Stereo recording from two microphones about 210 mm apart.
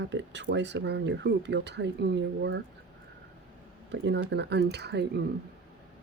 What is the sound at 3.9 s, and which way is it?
Speech, 55° right (ahead or behind).